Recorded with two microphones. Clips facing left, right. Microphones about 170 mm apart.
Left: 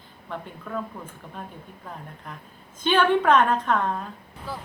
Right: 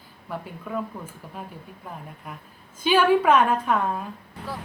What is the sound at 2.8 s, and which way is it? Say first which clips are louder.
A woman's voice: right 2 dB; 5° right (ahead or behind).